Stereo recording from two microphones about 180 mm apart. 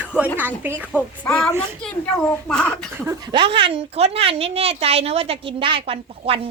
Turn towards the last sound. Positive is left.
turn(degrees=-30)  # may be behind; listen again after turning